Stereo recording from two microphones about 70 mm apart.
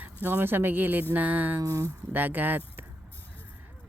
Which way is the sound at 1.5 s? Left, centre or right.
Right.